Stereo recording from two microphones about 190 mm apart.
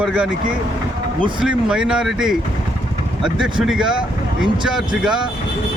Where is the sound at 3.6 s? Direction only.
Centre (ahead or behind).